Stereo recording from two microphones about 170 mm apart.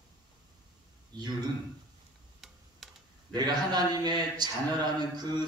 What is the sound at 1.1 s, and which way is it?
Speech, 25° right (ahead or behind).